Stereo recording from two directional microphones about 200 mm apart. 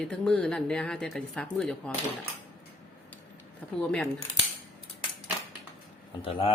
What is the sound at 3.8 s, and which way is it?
Speech, 5° left (ahead or behind).